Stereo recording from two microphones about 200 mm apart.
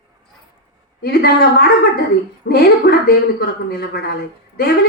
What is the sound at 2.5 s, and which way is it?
Speech, 50° left (ahead or behind).